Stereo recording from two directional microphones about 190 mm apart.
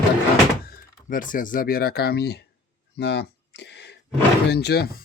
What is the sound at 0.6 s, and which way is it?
Speech, 50° left (ahead or behind).